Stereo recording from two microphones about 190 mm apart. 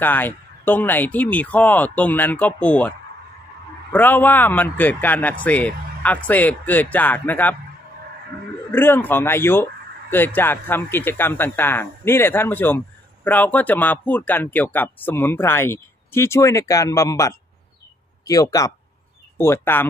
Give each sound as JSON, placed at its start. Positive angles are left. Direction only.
{"t": 0.0, "sound": "speech", "side_deg": 10}
{"t": 3.9, "sound": "speech", "side_deg": 10}
{"t": 8.7, "sound": "speech", "side_deg": 10}